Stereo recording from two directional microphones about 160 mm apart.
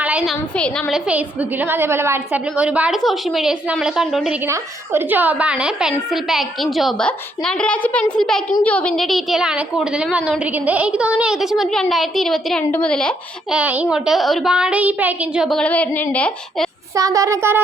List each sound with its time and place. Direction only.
0.0 s a sound: 10° right (ahead or behind)
0.5 s speech: 5° left (ahead or behind)
0.9 s a woman's voice: 10° right (ahead or behind)
4.4 s a woman's voice: 15° right (ahead or behind); by 13.6 s 5° left (ahead or behind)
13.6 s a woman's voice: 10° right (ahead or behind); by 16.6 s 10° left (ahead or behind)
16.9 s a child's voice: 20° right (ahead or behind)